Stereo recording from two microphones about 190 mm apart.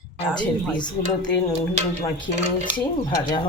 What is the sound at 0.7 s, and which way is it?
Cutlery, 25° left (ahead or behind).